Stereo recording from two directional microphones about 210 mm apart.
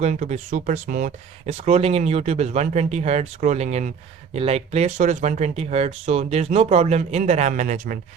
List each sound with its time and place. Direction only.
0.0 s speech: 35° right (ahead or behind)